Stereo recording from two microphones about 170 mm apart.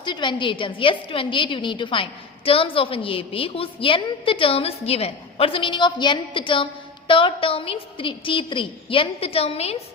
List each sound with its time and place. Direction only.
0.0 s a woman's voice: 25° left (ahead or behind)